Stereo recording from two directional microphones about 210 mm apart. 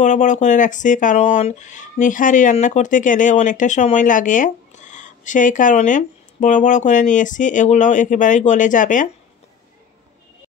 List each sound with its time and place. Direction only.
0.0 s speech: 35° left (ahead or behind)